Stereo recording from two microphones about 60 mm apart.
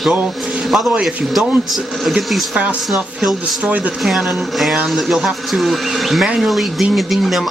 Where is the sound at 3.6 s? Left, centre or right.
Right.